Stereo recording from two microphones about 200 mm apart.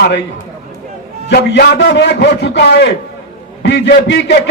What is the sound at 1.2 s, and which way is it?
A man's voice, 55° left (ahead or behind).